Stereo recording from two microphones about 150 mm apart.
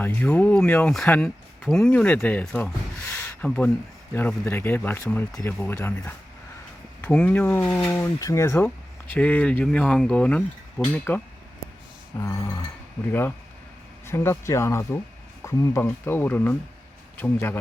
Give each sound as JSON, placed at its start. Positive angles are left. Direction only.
{"t": 0.0, "sound": "speech", "side_deg": 10}
{"t": 2.6, "sound": "a sound", "side_deg": 15}
{"t": 4.1, "sound": "speech", "side_deg": 15}
{"t": 14.1, "sound": "speech", "side_deg": 15}